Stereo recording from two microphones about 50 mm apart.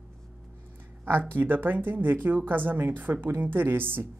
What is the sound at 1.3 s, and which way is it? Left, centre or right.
Speech, right.